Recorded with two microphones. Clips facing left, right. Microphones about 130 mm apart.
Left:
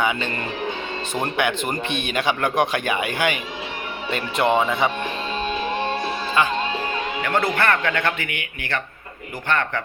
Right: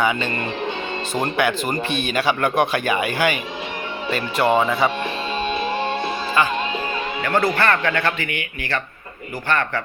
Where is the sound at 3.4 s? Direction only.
15° right (ahead or behind).